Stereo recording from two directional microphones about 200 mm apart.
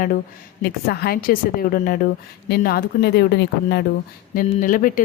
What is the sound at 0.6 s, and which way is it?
A woman's voice, 50° left (ahead or behind).